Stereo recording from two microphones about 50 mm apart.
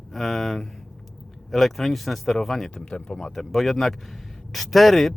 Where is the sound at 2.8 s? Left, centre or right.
Centre.